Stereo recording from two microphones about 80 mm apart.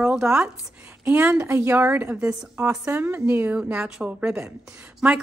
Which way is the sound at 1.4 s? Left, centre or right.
Right.